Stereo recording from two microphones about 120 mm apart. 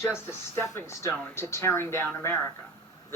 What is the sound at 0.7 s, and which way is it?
Speech, 25° left (ahead or behind).